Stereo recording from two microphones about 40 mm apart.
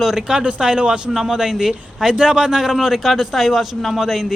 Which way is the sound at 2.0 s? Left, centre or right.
Centre.